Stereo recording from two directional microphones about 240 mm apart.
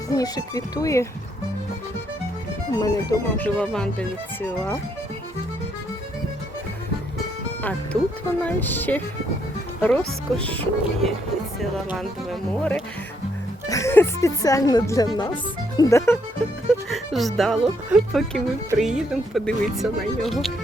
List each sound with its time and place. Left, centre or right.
0.1 s a woman's voice: centre
2.7 s a woman's voice: centre
8.4 s a woman's voice: centre
13.7 s a woman's voice: centre
16.9 s speech: centre